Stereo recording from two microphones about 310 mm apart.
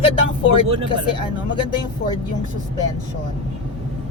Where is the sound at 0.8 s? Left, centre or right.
Centre.